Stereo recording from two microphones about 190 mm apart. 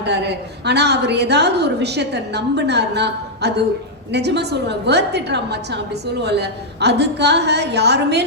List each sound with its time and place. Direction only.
0.0 s a woman's voice: 60° right (ahead or behind)